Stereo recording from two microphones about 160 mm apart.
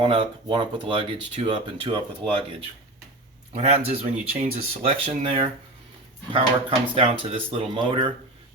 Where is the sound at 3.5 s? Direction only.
45° right (ahead or behind).